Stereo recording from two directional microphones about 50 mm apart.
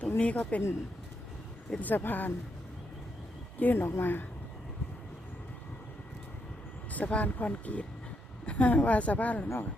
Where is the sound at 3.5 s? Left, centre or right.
Left.